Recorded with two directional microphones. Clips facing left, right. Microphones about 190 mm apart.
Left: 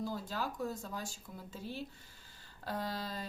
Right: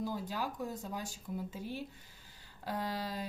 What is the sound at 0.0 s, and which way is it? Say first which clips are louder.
A woman's voice: right 1 dB; 15° right (ahead or behind).